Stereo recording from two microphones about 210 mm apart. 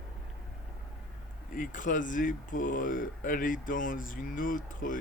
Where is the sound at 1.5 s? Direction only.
40° left (ahead or behind).